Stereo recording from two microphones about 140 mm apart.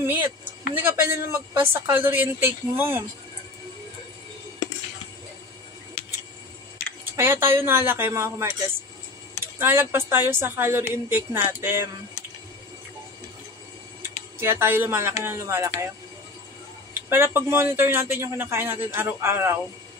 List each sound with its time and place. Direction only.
0.0 s speech: 15° right (ahead or behind)
7.1 s speech: 15° right (ahead or behind)
14.0 s speech: 15° right (ahead or behind)
17.1 s speech: 15° right (ahead or behind)